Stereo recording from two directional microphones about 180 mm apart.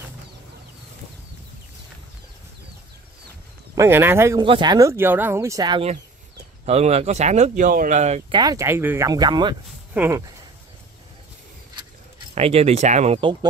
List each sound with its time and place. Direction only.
3.7 s speech: 15° right (ahead or behind)
4.4 s speech: 25° right (ahead or behind)
6.6 s speech: 35° right (ahead or behind)
8.3 s speech: 20° right (ahead or behind)
12.4 s speech: 35° right (ahead or behind)